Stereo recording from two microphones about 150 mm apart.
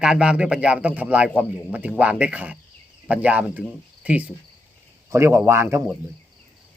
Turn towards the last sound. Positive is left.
turn(degrees=-15)  # may be behind; listen again after turning